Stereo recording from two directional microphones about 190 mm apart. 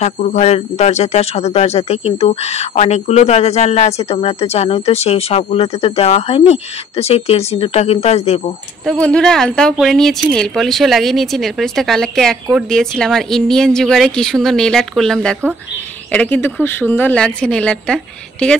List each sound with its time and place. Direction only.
0.0 s speech: 35° left (ahead or behind)
9.0 s a woman's voice: 5° left (ahead or behind)